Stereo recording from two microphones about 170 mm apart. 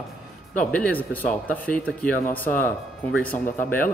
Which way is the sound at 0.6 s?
5° left (ahead or behind).